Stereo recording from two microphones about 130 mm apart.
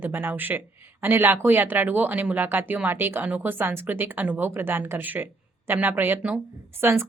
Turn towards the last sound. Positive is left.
turn(degrees=-20)  # may be behind; listen again after turning